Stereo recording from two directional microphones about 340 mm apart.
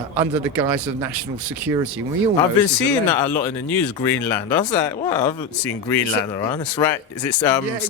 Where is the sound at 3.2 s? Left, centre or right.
Centre.